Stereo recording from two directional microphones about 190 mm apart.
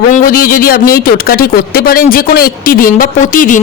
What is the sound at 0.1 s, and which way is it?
A man's voice, 45° left (ahead or behind).